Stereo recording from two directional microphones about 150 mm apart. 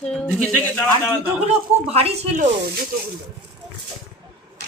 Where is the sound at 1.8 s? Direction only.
45° right (ahead or behind).